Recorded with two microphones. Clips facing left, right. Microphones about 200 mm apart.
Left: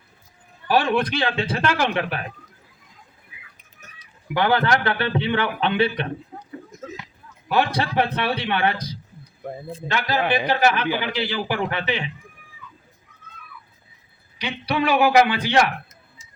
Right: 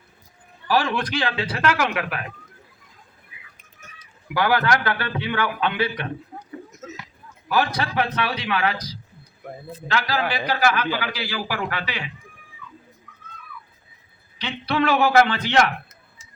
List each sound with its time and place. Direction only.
0.7 s a man's voice: 25° left (ahead or behind)
4.4 s a man's voice: 25° left (ahead or behind)
7.4 s a man's voice: 25° left (ahead or behind)
14.3 s a man's voice: 15° left (ahead or behind)